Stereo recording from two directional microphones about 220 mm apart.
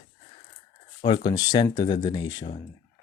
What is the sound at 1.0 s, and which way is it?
Speech, 20° left (ahead or behind).